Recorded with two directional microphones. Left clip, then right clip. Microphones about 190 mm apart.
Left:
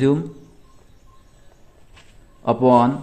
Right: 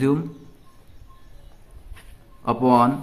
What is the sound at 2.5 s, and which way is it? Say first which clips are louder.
Speech: left 3 dB; 15° left (ahead or behind).